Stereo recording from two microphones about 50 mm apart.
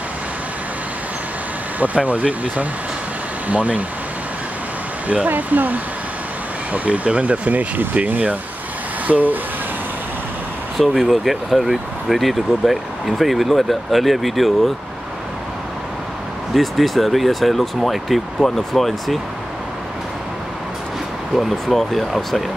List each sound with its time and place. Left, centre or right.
1.8 s speech: right
5.0 s speech: right
10.8 s speech: centre
16.5 s speech: centre
21.4 s speech: centre